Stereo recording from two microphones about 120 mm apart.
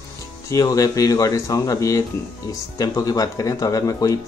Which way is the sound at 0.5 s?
30° left (ahead or behind).